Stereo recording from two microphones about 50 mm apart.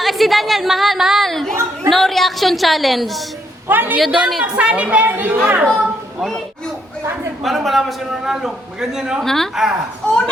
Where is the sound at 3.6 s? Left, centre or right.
Right.